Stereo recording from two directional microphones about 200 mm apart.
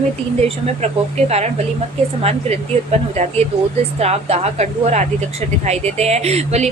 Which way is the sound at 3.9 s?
30° right (ahead or behind).